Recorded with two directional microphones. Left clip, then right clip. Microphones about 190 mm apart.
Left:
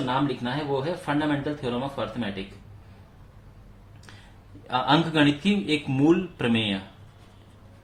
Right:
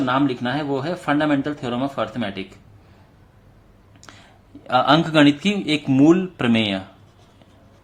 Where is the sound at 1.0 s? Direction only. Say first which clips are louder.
Right 6 dB; 50° right (ahead or behind).